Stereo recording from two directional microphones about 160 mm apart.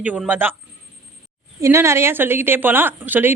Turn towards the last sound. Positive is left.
turn(degrees=-10)  # may be behind; listen again after turning